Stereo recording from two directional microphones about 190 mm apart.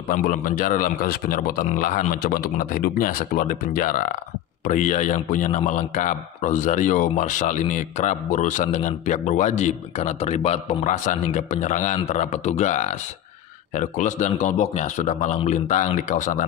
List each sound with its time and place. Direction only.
0.1 s a man's voice: 45° left (ahead or behind)